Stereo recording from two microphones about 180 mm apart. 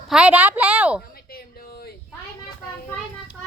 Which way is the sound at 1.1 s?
55° left (ahead or behind).